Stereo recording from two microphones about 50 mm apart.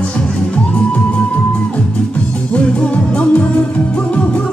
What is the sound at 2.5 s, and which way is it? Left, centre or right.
Music, left.